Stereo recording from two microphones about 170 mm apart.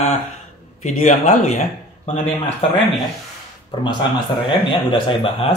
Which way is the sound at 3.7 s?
25° left (ahead or behind).